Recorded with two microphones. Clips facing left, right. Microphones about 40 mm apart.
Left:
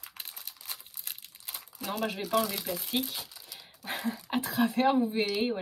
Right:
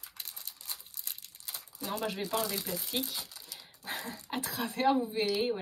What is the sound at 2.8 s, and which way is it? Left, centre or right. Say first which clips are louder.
Speech: left 3 dB; left.